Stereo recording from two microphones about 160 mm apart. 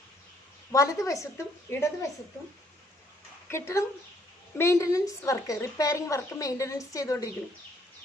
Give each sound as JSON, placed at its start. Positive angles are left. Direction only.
{"t": 0.7, "sound": "a woman's voice", "side_deg": 20}
{"t": 3.5, "sound": "a woman's voice", "side_deg": 15}